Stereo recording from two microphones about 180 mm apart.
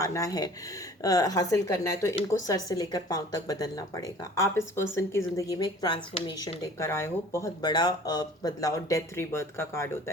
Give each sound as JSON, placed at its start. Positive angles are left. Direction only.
{"t": 0.0, "sound": "speech", "side_deg": 20}